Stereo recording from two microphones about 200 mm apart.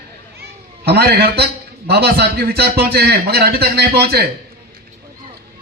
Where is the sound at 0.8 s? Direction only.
55° right (ahead or behind).